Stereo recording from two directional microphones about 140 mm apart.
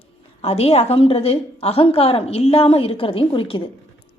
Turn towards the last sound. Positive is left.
turn(degrees=40)  # may be behind; listen again after turning